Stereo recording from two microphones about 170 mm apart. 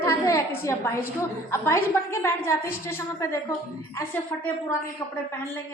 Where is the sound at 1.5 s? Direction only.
15° left (ahead or behind).